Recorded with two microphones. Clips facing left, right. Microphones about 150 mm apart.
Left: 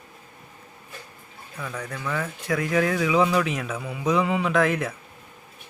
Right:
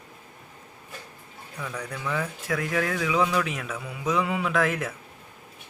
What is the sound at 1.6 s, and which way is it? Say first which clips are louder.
Speech: left 1 dB; centre (ahead or behind).